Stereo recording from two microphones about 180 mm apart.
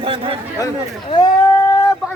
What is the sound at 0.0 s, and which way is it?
Chatter, 30° right (ahead or behind).